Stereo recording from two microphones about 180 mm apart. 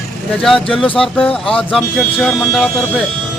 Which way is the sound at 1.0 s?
5° left (ahead or behind).